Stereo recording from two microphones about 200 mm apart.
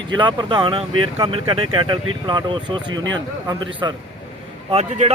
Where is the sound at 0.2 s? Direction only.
25° right (ahead or behind).